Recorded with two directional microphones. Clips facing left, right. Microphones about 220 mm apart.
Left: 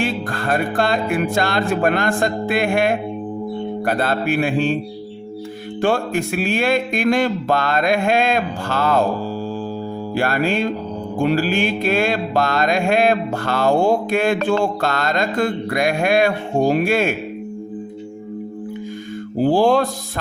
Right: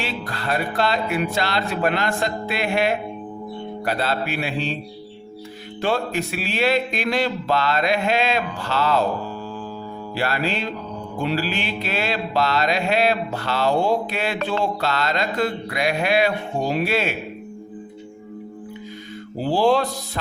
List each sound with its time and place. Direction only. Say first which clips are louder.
0.0 s mantra: left 6 dB; 50° left (ahead or behind)
5.8 s mantra: left 4 dB; 50° left (ahead or behind)
10.2 s mantra: left 5 dB; 50° left (ahead or behind)
19.4 s mantra: left 4 dB; 50° left (ahead or behind)